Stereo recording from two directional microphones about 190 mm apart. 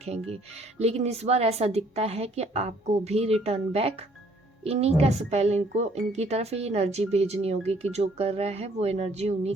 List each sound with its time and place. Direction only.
0.0 s a woman's voice: 35° right (ahead or behind)